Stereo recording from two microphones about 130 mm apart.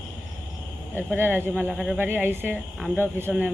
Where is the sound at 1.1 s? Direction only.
15° right (ahead or behind).